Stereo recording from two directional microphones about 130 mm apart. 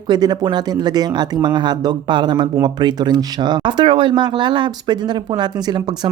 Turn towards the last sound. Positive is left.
turn(degrees=-30)  # may be behind; listen again after turning